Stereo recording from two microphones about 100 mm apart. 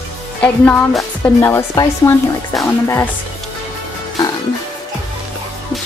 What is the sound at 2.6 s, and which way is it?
Speech, 30° left (ahead or behind).